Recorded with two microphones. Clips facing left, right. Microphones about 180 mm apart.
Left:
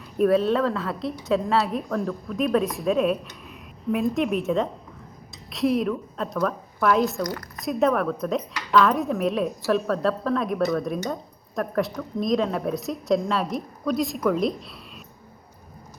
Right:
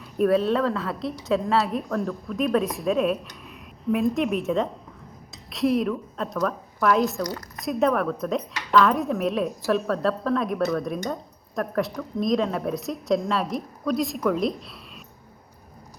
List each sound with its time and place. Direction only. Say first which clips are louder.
0.0 s a woman's voice: left 1 dB; centre (ahead or behind)